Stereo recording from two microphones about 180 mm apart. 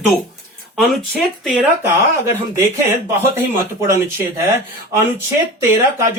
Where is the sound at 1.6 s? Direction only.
15° right (ahead or behind).